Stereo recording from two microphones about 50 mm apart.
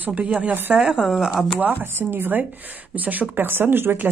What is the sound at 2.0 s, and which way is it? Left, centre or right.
A woman's voice, right.